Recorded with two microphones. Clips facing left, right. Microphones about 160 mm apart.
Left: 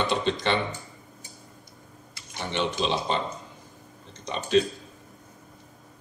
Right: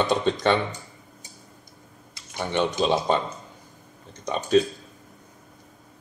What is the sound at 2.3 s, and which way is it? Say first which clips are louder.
Speech: right 4 dB; 50° right (ahead or behind).